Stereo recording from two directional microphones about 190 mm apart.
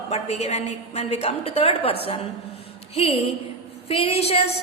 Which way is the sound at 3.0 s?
30° left (ahead or behind).